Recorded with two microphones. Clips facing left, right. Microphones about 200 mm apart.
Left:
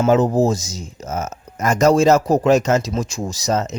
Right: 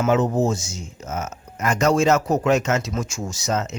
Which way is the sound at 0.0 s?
35° left (ahead or behind).